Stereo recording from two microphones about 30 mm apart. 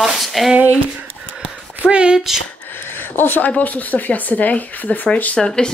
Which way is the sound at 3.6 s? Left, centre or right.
Left.